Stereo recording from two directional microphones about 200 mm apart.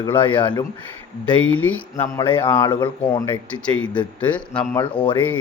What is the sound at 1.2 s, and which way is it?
A man's voice, 5° left (ahead or behind).